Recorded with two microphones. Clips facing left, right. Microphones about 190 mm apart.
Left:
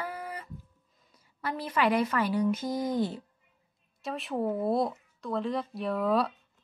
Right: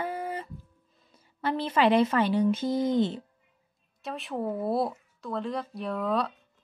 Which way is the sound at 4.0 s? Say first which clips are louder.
Left 1 dB; centre (ahead or behind).